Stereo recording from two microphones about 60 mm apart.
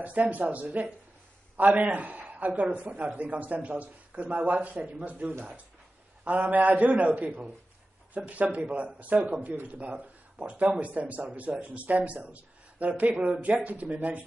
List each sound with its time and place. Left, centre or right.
0.0 s a man's voice: right